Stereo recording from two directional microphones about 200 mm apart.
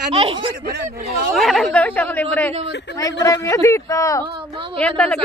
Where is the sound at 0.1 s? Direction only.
30° right (ahead or behind).